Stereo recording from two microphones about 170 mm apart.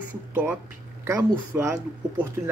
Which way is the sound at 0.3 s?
10° right (ahead or behind).